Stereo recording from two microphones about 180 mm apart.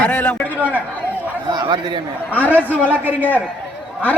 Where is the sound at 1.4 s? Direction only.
25° right (ahead or behind).